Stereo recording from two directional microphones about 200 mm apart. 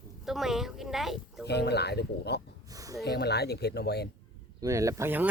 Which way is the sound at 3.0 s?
55° left (ahead or behind).